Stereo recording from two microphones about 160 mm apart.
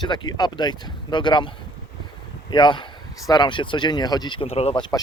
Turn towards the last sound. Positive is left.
turn(degrees=30)  # may be behind; listen again after turning